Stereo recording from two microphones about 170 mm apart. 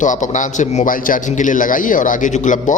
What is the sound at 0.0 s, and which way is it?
A man's voice, 45° left (ahead or behind).